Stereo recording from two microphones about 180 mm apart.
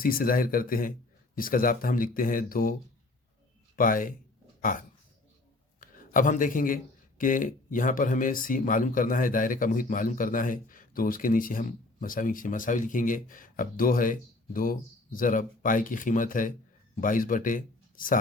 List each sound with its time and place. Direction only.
0.0 s speech: 55° left (ahead or behind)
3.8 s a man's voice: 50° left (ahead or behind)